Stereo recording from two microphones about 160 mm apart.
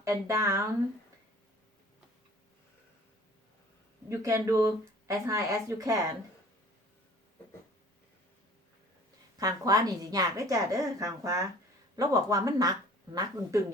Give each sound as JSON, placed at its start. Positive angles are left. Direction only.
{"t": 0.0, "sound": "a woman's voice", "side_deg": -20}
{"t": 4.1, "sound": "a woman's voice", "side_deg": -20}
{"t": 9.4, "sound": "a woman's voice", "side_deg": -25}